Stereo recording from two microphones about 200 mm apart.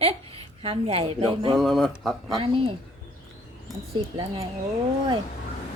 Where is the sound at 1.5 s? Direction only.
Centre (ahead or behind).